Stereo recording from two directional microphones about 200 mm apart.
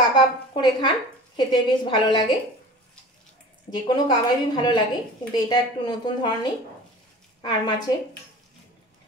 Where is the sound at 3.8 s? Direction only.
20° left (ahead or behind).